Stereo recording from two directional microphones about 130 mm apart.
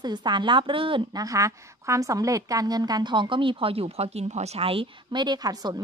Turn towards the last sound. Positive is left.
turn(degrees=-30)  # may be behind; listen again after turning